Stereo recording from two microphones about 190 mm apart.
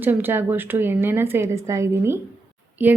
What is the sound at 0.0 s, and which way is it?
A woman's voice, 10° right (ahead or behind).